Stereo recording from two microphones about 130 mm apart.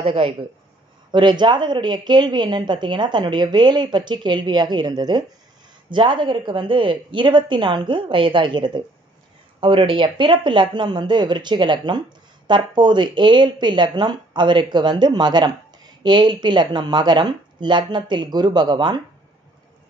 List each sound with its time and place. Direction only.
0.0 s speech: 40° right (ahead or behind)